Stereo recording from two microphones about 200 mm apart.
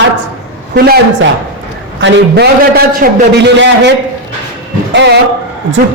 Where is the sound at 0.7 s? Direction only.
50° right (ahead or behind).